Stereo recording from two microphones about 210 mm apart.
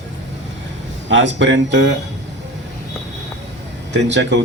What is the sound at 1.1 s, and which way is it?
Speech, 60° right (ahead or behind).